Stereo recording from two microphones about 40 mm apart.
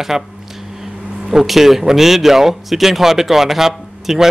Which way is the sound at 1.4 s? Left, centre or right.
Centre.